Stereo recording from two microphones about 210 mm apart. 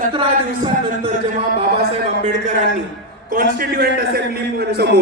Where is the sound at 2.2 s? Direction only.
35° right (ahead or behind).